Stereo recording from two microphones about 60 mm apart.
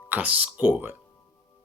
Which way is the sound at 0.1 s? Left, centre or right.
Right.